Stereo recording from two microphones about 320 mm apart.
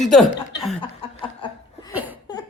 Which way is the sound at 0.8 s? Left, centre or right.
Centre.